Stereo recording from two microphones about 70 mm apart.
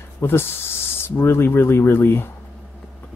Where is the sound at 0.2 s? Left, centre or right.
Left.